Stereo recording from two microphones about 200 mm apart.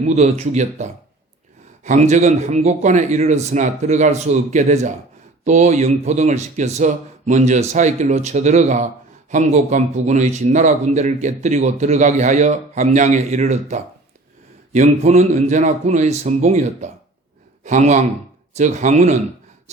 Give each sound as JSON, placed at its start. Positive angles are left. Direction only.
{"t": 0.0, "sound": "a man's voice", "side_deg": -35}